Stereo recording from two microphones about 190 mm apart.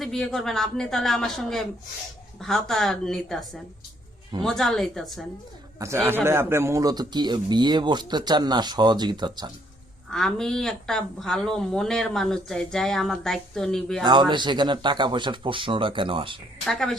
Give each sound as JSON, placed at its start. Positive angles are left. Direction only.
{"t": 0.0, "sound": "speech", "side_deg": 0}
{"t": 5.8, "sound": "speech", "side_deg": -15}
{"t": 10.1, "sound": "speech", "side_deg": 0}
{"t": 14.0, "sound": "speech", "side_deg": -25}
{"t": 16.6, "sound": "speech", "side_deg": 0}